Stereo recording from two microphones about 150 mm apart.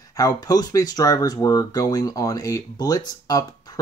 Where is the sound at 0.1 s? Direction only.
25° left (ahead or behind).